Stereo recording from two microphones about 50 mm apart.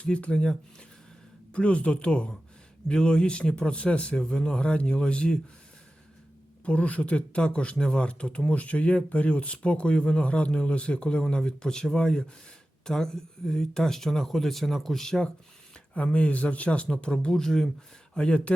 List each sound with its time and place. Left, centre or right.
0.0 s speech: left
1.5 s speech: left
6.7 s speech: left; by 15.3 s centre
16.0 s speech: left; by 17.7 s centre
18.1 s speech: left